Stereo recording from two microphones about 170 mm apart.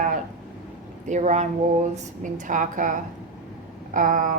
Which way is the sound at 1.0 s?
45° right (ahead or behind).